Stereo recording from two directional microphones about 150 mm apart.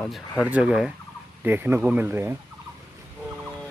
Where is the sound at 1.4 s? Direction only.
15° right (ahead or behind).